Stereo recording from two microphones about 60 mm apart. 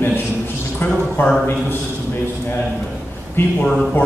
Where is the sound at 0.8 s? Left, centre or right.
Left.